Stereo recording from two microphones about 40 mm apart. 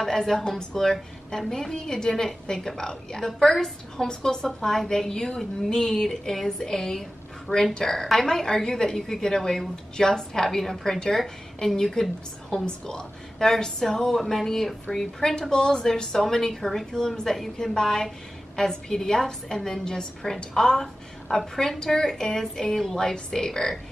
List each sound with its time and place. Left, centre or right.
0.0 s a woman's voice: centre
14.0 s a woman's voice: centre